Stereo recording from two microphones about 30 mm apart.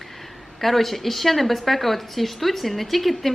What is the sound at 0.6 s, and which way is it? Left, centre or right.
A woman's voice, centre.